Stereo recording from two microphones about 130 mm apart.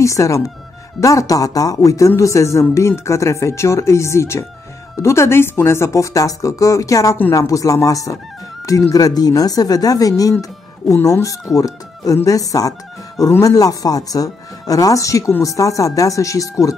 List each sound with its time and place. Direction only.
0.0 s speech: 25° left (ahead or behind)